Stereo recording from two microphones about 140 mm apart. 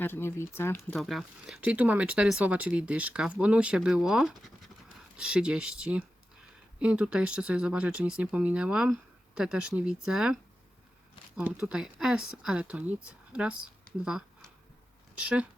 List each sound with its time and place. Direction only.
0.0 s speech: 15° left (ahead or behind)
0.9 s speech: centre (ahead or behind)
1.6 s speech: 10° right (ahead or behind)
11.6 s speech: 5° right (ahead or behind)